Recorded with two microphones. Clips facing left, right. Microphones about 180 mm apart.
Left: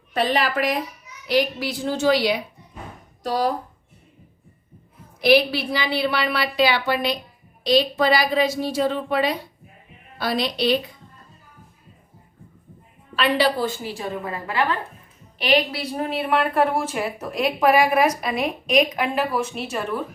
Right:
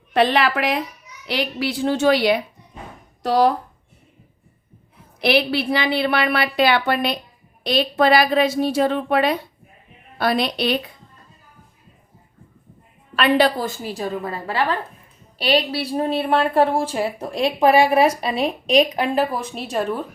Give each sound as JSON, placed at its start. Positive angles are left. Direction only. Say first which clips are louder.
{"t": 0.1, "sound": "a woman's voice", "louder": "right 4 dB", "side_deg": -70}
{"t": 5.2, "sound": "a woman's voice", "louder": "left 1 dB", "side_deg": -65}
{"t": 13.1, "sound": "a woman's voice", "louder": "right 3 dB", "side_deg": -50}